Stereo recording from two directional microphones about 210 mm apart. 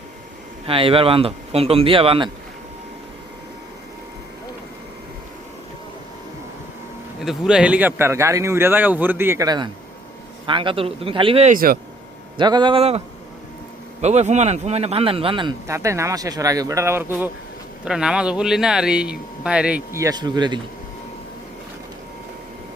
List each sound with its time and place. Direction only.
0.7 s speech: 25° right (ahead or behind)
7.2 s speech: centre (ahead or behind); by 11.5 s 25° right (ahead or behind)
11.5 s speech: 45° right (ahead or behind)
12.4 s speech: 20° right (ahead or behind)
14.0 s speech: 30° right (ahead or behind)